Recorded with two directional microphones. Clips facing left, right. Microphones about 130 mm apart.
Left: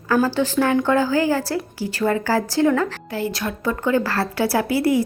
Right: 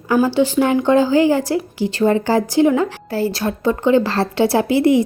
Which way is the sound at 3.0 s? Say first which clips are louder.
Right 5 dB; 35° right (ahead or behind).